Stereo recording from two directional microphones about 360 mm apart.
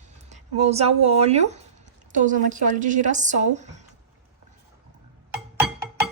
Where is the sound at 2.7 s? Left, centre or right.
Right.